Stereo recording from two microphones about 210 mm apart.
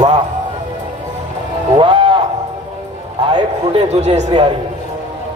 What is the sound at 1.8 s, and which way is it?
Music, 20° right (ahead or behind).